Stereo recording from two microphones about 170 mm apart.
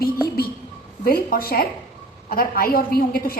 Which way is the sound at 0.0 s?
60° left (ahead or behind).